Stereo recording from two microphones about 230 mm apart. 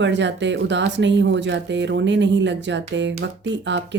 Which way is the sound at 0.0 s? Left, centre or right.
Right.